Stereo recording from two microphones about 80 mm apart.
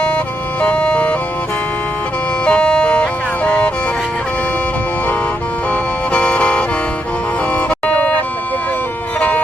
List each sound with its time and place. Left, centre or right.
0.6 s music: centre
2.4 s music: centre
6.1 s music: centre